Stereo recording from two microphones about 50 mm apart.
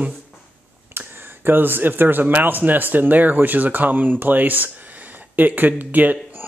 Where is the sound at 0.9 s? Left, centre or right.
Right.